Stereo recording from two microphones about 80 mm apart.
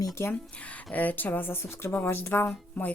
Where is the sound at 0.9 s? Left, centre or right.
Left.